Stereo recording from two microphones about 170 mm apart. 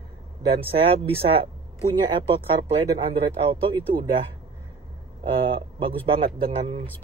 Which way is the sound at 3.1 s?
30° right (ahead or behind).